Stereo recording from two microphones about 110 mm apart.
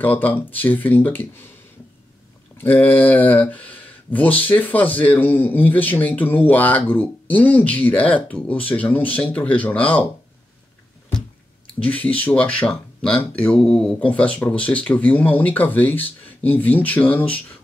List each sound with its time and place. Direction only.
0.0 s speech: 15° left (ahead or behind)
2.5 s speech: 20° left (ahead or behind)
11.1 s speech: 10° left (ahead or behind)